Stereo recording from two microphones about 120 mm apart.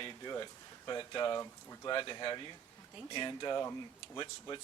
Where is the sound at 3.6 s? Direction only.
25° left (ahead or behind).